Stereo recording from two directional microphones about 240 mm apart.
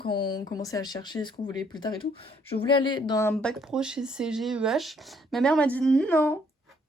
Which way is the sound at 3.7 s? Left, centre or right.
Centre.